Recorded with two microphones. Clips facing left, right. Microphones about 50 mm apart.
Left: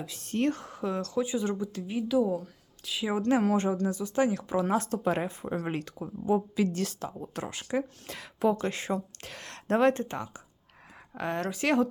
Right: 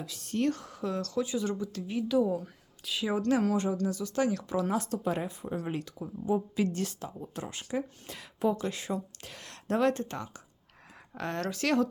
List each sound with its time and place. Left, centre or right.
0.0 s speech: left; by 3.1 s centre
3.2 s speech: left
4.7 s speech: left
6.2 s a woman's voice: left
8.5 s speech: left
9.7 s speech: left
10.9 s speech: centre